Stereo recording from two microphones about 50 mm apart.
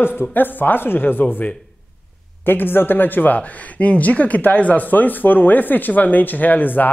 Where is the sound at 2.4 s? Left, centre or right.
Left.